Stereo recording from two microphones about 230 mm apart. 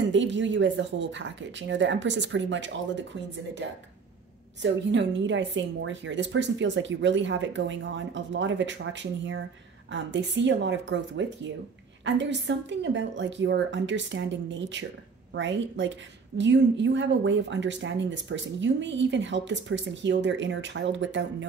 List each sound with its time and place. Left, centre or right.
0.1 s speech: right
4.6 s speech: right